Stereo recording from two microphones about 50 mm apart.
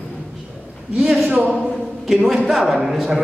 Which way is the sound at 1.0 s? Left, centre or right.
Centre.